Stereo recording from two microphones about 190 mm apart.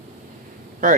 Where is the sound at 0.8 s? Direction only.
45° right (ahead or behind).